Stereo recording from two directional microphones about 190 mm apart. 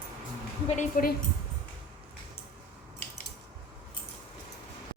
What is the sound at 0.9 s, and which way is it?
Speech, 45° left (ahead or behind).